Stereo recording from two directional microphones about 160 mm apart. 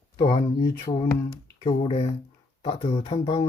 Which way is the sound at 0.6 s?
25° left (ahead or behind).